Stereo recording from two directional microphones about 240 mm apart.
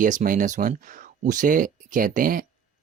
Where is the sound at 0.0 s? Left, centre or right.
Right.